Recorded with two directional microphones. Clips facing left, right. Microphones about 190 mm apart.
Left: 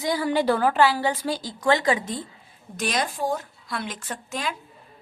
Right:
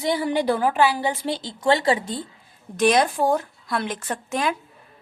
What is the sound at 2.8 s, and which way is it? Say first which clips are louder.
A woman's voice: right 8 dB; 55° right (ahead or behind).